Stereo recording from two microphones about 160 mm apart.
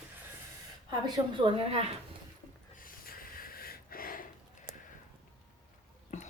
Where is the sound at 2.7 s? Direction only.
60° left (ahead or behind).